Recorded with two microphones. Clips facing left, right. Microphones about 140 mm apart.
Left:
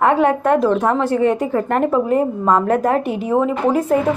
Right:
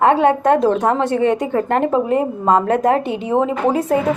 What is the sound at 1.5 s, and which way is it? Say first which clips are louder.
A woman's voice: even; 25° right (ahead or behind).